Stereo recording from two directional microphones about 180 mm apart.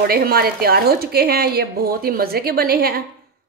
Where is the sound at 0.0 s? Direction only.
55° right (ahead or behind).